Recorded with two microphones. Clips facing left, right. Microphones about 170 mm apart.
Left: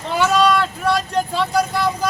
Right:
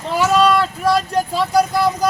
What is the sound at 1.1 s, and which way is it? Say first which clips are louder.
Speech: right 2 dB; 10° right (ahead or behind).